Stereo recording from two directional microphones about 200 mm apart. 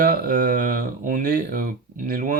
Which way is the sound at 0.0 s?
45° right (ahead or behind).